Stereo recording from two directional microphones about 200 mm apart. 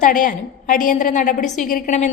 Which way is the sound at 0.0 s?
45° left (ahead or behind).